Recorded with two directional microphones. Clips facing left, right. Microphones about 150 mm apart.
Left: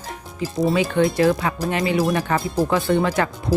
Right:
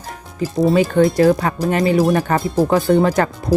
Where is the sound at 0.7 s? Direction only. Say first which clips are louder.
Right 5 dB; 45° right (ahead or behind).